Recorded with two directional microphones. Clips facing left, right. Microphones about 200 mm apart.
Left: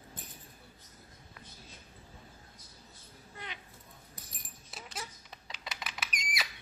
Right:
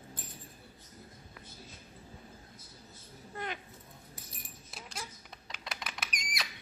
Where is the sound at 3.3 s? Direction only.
50° right (ahead or behind).